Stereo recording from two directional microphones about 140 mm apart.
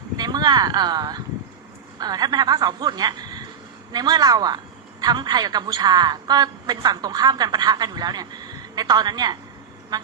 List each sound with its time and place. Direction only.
0.2 s a man's voice: 30° right (ahead or behind)